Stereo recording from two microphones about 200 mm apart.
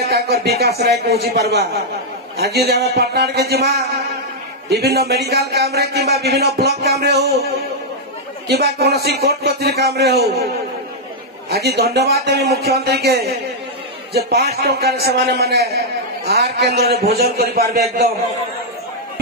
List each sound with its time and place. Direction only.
0.0 s a man's voice: 55° right (ahead or behind)
8.5 s a man's voice: 55° right (ahead or behind)
11.5 s a man's voice: 55° right (ahead or behind)